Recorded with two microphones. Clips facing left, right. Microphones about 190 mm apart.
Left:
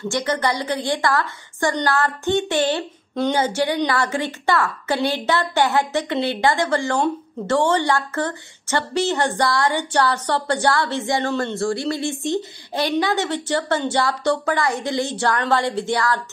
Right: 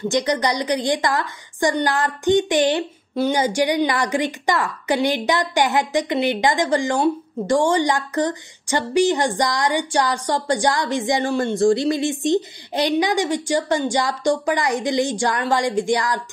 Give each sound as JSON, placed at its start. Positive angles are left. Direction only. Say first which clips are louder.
{"t": 0.1, "sound": "a woman's voice", "louder": "right 1 dB", "side_deg": -15}